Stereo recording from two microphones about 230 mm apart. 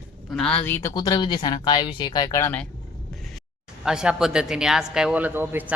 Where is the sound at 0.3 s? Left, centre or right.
Centre.